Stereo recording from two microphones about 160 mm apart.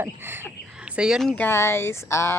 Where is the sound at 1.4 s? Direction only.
15° left (ahead or behind).